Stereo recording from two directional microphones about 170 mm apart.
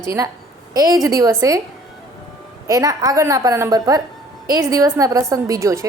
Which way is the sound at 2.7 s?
20° right (ahead or behind).